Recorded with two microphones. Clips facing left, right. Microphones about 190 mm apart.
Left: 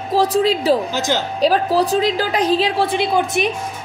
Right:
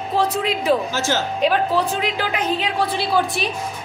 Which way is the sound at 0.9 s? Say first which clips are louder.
Left 2 dB; 15° left (ahead or behind).